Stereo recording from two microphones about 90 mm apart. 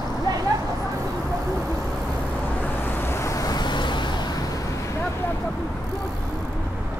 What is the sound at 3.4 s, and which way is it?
Vehicle, 50° left (ahead or behind).